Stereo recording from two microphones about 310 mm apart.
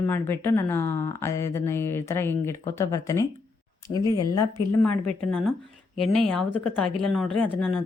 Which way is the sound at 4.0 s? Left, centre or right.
Centre.